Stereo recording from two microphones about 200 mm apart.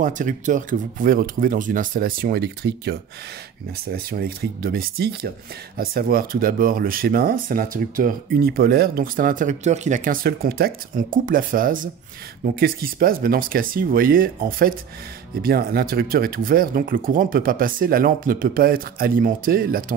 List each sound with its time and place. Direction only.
0.0 s speech: 40° right (ahead or behind)